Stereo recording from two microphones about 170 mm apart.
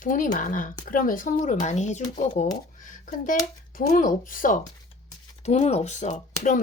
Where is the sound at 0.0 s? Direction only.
50° left (ahead or behind).